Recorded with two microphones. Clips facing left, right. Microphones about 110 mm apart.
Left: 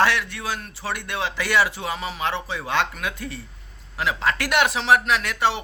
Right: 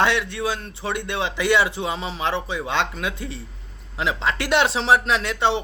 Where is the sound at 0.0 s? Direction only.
20° right (ahead or behind).